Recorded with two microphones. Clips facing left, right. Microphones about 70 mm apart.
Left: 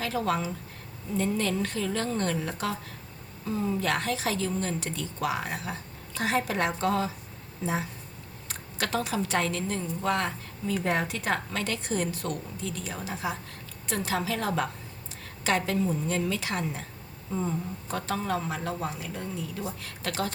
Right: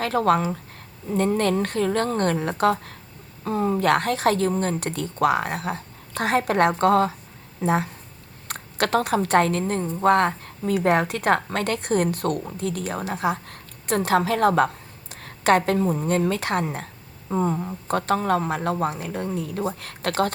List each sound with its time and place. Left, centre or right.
0.0 s a woman's voice: right